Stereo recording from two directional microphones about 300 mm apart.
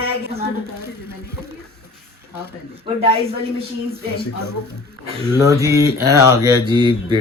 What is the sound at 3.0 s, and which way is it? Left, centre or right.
Speech, centre.